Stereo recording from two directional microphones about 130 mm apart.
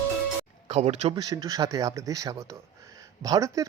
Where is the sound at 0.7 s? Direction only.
50° right (ahead or behind).